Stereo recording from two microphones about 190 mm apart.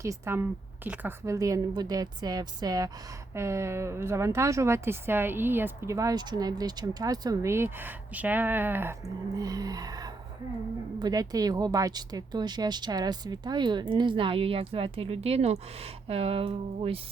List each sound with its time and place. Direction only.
0.0 s speech: 15° right (ahead or behind)